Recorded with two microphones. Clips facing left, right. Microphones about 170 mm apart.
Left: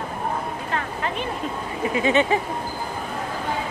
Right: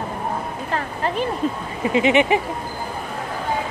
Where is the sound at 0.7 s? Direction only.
35° right (ahead or behind).